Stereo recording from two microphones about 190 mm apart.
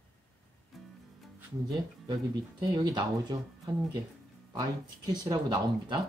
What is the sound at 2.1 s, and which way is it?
Speech, 20° right (ahead or behind).